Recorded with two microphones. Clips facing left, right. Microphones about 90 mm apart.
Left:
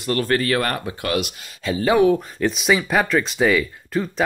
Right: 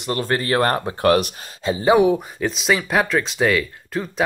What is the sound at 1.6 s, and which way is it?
Speech, 20° right (ahead or behind).